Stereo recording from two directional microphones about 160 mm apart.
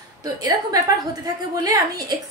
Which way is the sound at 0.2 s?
20° right (ahead or behind).